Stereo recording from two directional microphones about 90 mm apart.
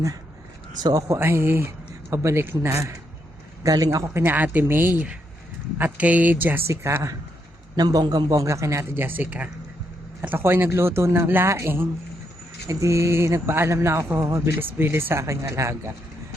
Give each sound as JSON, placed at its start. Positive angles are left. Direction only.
{"t": 0.8, "sound": "speech", "side_deg": -45}
{"t": 3.6, "sound": "speech", "side_deg": -45}
{"t": 4.1, "sound": "speech", "side_deg": -25}
{"t": 6.7, "sound": "speech", "side_deg": -30}
{"t": 7.8, "sound": "speech", "side_deg": -50}
{"t": 14.8, "sound": "speech", "side_deg": -25}